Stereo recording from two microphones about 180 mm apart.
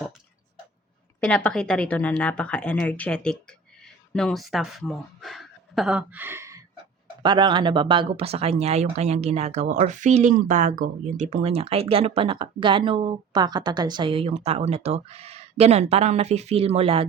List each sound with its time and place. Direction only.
1.2 s a woman's voice: 5° left (ahead or behind); by 6.6 s 15° right (ahead or behind)
7.2 s speech: 25° right (ahead or behind)